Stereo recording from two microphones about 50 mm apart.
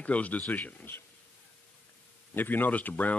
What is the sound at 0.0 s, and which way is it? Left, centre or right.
Speech, left.